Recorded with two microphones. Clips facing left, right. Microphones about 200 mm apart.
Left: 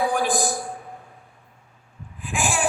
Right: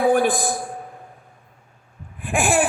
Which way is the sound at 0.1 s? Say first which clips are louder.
Right 5 dB; 55° right (ahead or behind).